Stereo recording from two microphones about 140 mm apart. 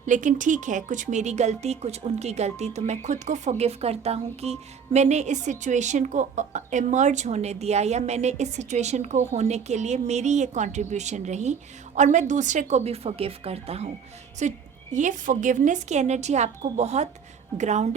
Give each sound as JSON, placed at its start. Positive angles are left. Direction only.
{"t": 0.0, "sound": "a woman's voice", "side_deg": -65}
{"t": 14.4, "sound": "a woman's voice", "side_deg": -60}